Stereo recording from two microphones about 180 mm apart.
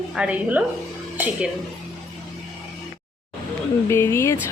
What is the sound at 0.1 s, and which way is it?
Speech, 5° right (ahead or behind).